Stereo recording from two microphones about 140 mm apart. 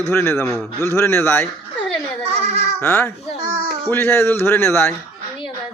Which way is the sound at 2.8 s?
15° left (ahead or behind).